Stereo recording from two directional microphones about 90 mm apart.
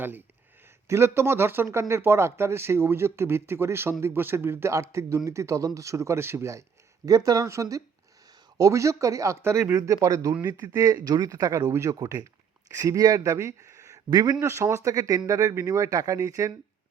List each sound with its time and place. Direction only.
0.9 s speech: 30° right (ahead or behind)
10.4 s speech: 45° right (ahead or behind)
11.6 s speech: 30° right (ahead or behind); by 14.4 s 50° right (ahead or behind)
14.4 s speech: 30° right (ahead or behind)